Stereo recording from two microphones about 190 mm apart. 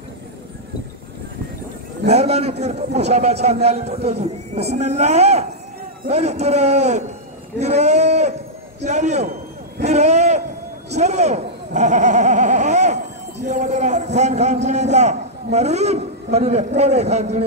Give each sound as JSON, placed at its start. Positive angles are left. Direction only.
{"t": 2.0, "sound": "a man's voice", "side_deg": -35}
{"t": 9.8, "sound": "a sound", "side_deg": -35}
{"t": 11.0, "sound": "a man's voice", "side_deg": -35}